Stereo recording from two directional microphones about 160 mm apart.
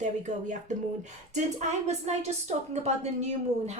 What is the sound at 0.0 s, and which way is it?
Speech, 50° right (ahead or behind).